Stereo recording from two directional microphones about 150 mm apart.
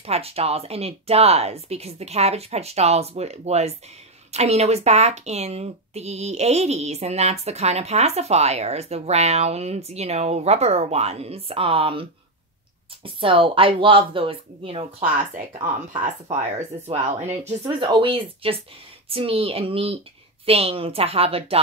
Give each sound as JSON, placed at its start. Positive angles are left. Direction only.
{"t": 0.0, "sound": "speech", "side_deg": -40}
{"t": 16.0, "sound": "speech", "side_deg": -55}
{"t": 18.0, "sound": "speech", "side_deg": -35}